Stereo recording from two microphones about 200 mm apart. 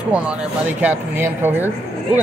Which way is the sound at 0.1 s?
5° right (ahead or behind).